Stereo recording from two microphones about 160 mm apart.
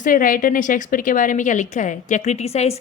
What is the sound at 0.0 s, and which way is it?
A woman's voice, 60° left (ahead or behind).